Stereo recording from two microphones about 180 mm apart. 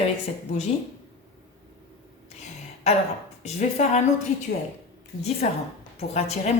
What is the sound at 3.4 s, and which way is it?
Speech, 40° left (ahead or behind).